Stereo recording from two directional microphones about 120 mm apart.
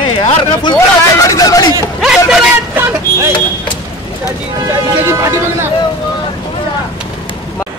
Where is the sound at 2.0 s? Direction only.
5° right (ahead or behind).